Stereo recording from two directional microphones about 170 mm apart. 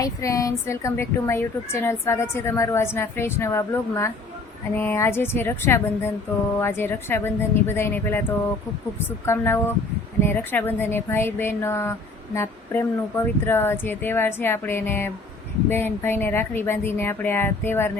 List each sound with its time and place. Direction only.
0.0 s speech: 20° left (ahead or behind)